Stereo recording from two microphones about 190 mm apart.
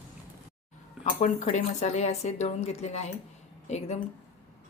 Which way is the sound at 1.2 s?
35° left (ahead or behind).